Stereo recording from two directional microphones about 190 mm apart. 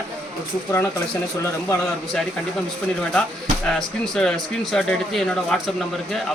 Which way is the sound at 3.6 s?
5° left (ahead or behind).